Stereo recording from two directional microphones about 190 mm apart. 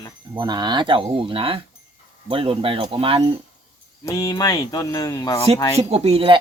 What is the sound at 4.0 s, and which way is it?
Speech, 15° left (ahead or behind).